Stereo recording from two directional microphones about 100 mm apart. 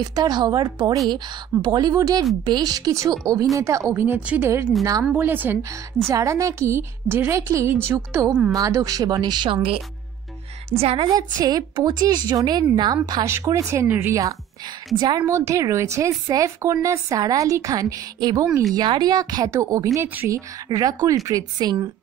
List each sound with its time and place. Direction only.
0.1 s a woman's voice: 45° right (ahead or behind)
3.8 s a woman's voice: 20° right (ahead or behind)
6.0 s a woman's voice: 30° right (ahead or behind)
8.5 s a woman's voice: 35° right (ahead or behind)
10.8 s a woman's voice: 85° right
11.1 s a woman's voice: 40° right (ahead or behind)
13.8 s a woman's voice: 20° right (ahead or behind)
15.0 s a woman's voice: 45° right (ahead or behind)
15.2 s a woman's voice: 30° right (ahead or behind)